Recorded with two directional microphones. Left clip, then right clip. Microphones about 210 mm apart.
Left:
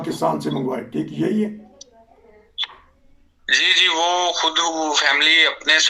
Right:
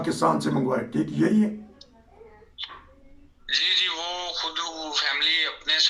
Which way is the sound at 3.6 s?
50° left (ahead or behind).